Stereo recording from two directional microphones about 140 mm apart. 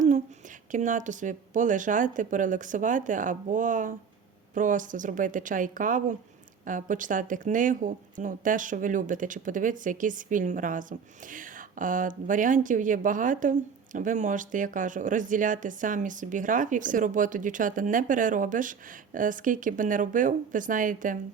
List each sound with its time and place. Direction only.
0.7 s speech: 65° right (ahead or behind)